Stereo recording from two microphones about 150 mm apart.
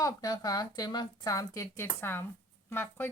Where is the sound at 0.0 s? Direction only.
25° left (ahead or behind).